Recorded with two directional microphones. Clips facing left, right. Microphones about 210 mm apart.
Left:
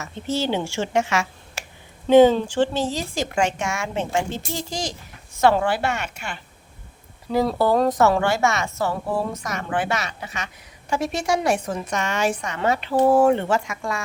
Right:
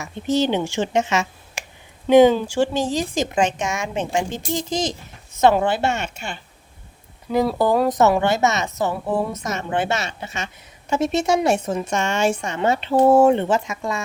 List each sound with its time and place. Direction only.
0.0 s a woman's voice: 15° right (ahead or behind)
7.3 s a woman's voice: 5° right (ahead or behind)